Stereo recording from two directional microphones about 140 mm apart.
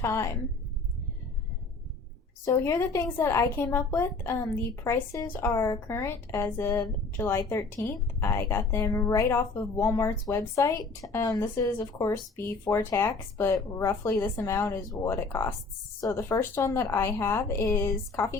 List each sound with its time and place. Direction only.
0.0 s a woman's voice: 20° left (ahead or behind)
2.4 s speech: 20° left (ahead or behind)